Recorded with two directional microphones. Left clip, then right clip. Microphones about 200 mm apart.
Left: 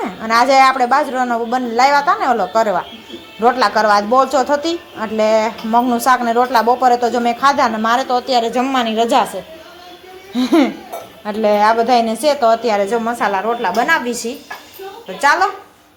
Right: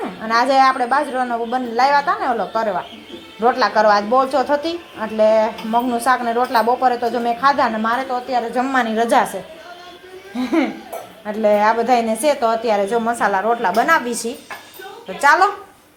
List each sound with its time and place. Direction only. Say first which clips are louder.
0.0 s a man's voice: left 3 dB; 10° left (ahead or behind)
8.6 s a woman's voice: left 2 dB; 5° left (ahead or behind)
10.3 s speech: left 5 dB; 20° left (ahead or behind)
11.3 s a woman's voice: left 2 dB; 10° left (ahead or behind)